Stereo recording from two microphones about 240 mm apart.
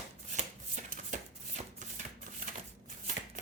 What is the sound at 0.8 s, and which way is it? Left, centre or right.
Chopping, right.